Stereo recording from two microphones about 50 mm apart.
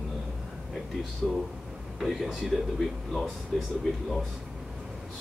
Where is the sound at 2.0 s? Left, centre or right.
Centre.